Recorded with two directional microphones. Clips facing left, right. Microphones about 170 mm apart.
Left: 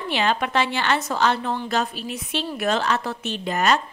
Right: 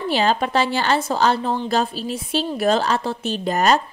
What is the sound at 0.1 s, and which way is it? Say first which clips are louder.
A woman's voice: right 3 dB; 35° right (ahead or behind).